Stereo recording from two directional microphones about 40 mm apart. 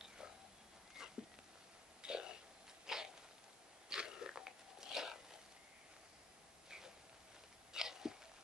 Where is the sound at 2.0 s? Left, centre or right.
Right.